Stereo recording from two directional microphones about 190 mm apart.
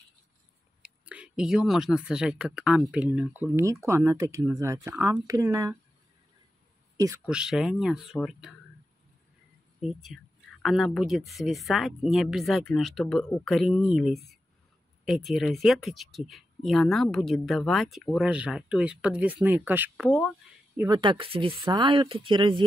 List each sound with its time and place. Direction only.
0.8 s speech: 5° right (ahead or behind)
7.2 s speech: 5° right (ahead or behind)
10.0 s speech: centre (ahead or behind)
20.9 s speech: 25° right (ahead or behind)